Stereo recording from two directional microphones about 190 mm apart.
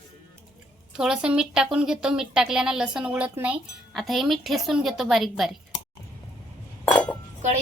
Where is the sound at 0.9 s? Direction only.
5° right (ahead or behind).